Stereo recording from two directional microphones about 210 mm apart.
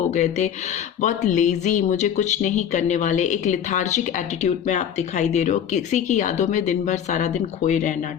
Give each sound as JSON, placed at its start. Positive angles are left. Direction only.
{"t": 0.1, "sound": "speech", "side_deg": 35}